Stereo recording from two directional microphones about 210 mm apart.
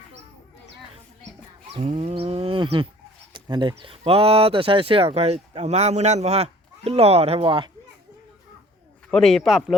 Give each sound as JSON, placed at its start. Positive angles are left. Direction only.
{"t": 1.7, "sound": "livestock", "side_deg": -30}
{"t": 3.3, "sound": "speech", "side_deg": -20}
{"t": 9.0, "sound": "a man's voice", "side_deg": 0}